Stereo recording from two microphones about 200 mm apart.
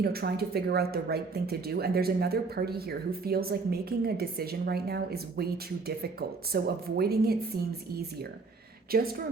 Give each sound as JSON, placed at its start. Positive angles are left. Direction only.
{"t": 0.0, "sound": "speech", "side_deg": -50}
{"t": 8.9, "sound": "speech", "side_deg": -50}